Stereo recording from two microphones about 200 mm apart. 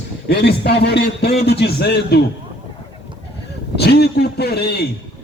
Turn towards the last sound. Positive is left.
turn(degrees=55)  # may be behind; listen again after turning